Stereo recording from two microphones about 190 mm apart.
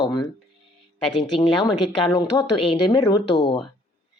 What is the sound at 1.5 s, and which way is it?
Speech, 25° left (ahead or behind).